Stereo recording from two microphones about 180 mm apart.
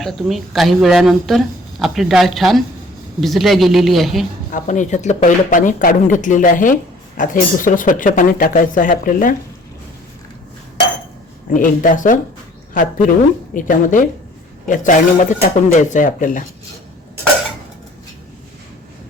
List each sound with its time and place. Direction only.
0.0 s speech: centre (ahead or behind)
4.5 s speech: 45° left (ahead or behind)
11.5 s speech: 50° left (ahead or behind)
13.5 s speech: 50° left (ahead or behind)